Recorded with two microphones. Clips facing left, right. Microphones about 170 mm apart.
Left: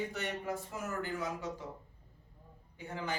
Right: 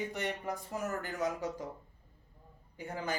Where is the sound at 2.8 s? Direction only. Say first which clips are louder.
Right 2 dB; 40° right (ahead or behind).